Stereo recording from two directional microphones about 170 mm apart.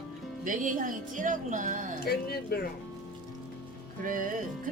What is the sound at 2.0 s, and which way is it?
Speech, 65° left (ahead or behind).